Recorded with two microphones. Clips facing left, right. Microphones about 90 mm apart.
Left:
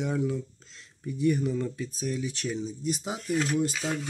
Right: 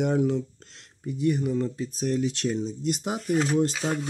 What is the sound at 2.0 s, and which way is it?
Speech, 60° right (ahead or behind).